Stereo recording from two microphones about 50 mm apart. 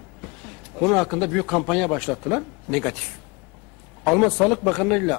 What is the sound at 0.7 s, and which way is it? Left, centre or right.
A man's voice, centre.